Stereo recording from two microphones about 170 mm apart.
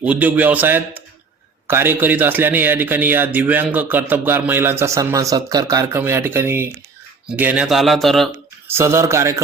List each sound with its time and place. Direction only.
0.0 s a man's voice: 10° right (ahead or behind)
8.6 s a man's voice: 15° right (ahead or behind)